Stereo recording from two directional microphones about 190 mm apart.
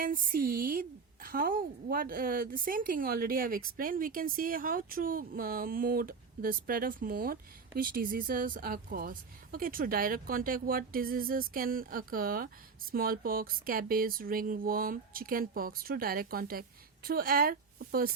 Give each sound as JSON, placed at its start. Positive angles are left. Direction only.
{"t": 0.0, "sound": "a woman's voice", "side_deg": -50}